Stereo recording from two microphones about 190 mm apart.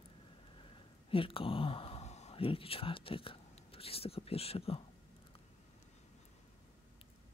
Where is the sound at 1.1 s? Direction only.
30° left (ahead or behind).